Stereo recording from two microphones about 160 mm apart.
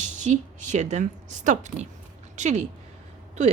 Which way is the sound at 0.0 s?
50° right (ahead or behind).